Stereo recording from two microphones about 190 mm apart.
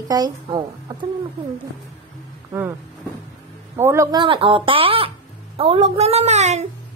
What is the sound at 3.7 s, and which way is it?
A woman's voice, 15° right (ahead or behind).